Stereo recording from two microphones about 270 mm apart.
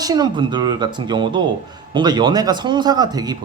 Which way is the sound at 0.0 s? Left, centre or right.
Centre.